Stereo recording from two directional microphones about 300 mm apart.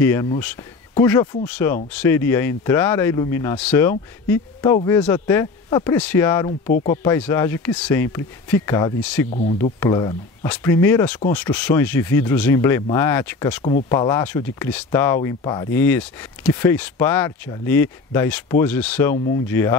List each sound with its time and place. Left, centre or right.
0.0 s speech: centre
9.3 s speech: left
9.8 s speech: centre